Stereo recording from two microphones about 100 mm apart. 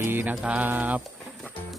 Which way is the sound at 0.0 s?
20° right (ahead or behind).